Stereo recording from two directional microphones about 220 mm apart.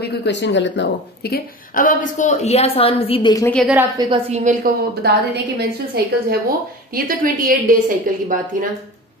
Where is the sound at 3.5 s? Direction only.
5° right (ahead or behind).